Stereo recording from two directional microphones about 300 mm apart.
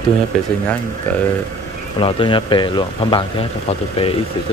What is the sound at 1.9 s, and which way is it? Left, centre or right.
Speech, centre.